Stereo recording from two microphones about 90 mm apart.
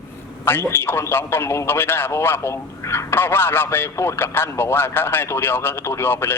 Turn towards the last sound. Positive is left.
turn(degrees=25)  # may be behind; listen again after turning